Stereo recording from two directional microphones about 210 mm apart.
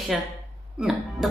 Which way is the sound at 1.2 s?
Centre (ahead or behind).